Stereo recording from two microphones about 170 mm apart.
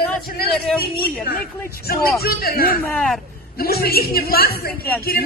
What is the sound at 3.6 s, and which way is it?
A man's voice, 65° left (ahead or behind).